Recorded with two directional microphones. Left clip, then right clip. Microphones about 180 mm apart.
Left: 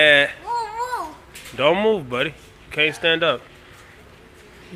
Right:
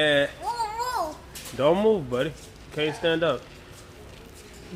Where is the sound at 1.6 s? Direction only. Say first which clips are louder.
Left 3 dB; 10° left (ahead or behind).